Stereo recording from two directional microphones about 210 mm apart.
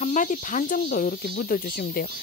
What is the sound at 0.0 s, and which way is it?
Speech, 35° left (ahead or behind).